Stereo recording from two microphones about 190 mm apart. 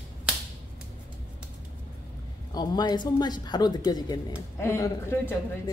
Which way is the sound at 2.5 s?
20° left (ahead or behind).